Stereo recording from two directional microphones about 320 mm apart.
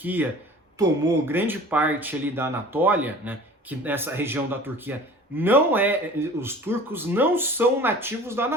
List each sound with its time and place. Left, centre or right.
0.0 s speech: centre